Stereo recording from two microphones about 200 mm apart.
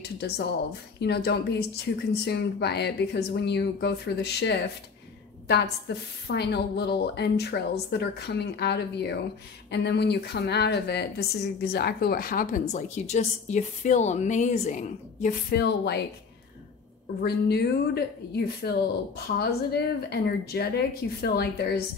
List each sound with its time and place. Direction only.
0.9 s a woman's voice: 55° left (ahead or behind); by 15.3 s 40° left (ahead or behind)
15.5 s a woman's voice: 55° left (ahead or behind)
17.2 s speech: 55° left (ahead or behind)